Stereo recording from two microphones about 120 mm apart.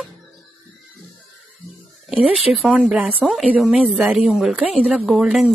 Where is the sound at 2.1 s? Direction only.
Centre (ahead or behind).